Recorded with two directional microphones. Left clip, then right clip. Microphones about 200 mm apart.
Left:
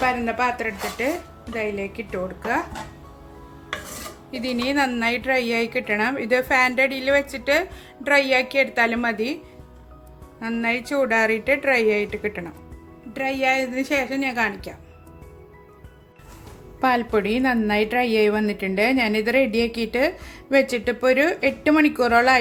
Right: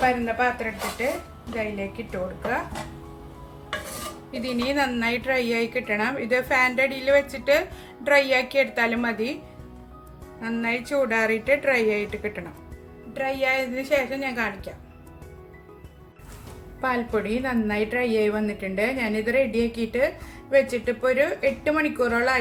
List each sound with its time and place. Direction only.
0.0 s a woman's voice: 55° left (ahead or behind)
4.3 s a woman's voice: 40° left (ahead or behind)
10.4 s a woman's voice: 35° left (ahead or behind)
16.8 s a woman's voice: 45° left (ahead or behind)